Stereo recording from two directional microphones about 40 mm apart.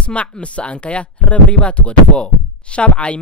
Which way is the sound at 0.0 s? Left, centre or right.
Left.